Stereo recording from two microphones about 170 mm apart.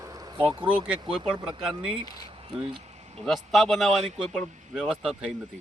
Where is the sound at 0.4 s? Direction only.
30° right (ahead or behind).